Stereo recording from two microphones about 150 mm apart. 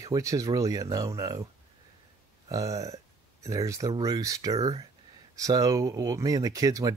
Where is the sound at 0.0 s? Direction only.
20° right (ahead or behind).